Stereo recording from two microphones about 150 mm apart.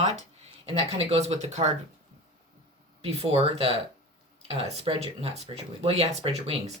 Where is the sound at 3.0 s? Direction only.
40° right (ahead or behind).